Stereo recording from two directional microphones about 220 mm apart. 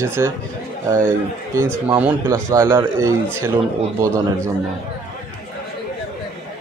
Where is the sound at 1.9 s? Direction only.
10° right (ahead or behind).